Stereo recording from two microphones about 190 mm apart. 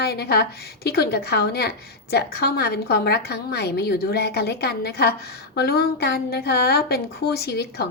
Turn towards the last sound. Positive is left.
turn(degrees=55)  # may be behind; listen again after turning